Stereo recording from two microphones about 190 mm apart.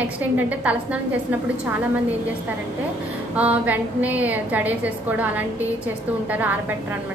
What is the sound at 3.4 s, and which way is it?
A woman's voice, 10° right (ahead or behind).